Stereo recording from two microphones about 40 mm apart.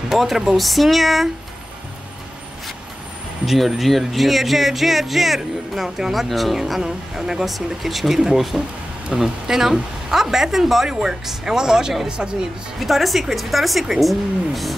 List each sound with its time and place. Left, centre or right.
0.1 s speech: centre
3.4 s speech: centre
7.4 s speech: centre; by 12.4 s right
12.7 s speech: centre